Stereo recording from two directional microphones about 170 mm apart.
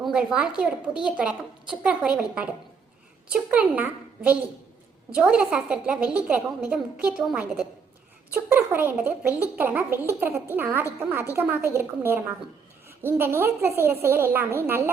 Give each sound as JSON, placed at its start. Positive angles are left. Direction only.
{"t": 0.0, "sound": "a woman's voice", "side_deg": -5}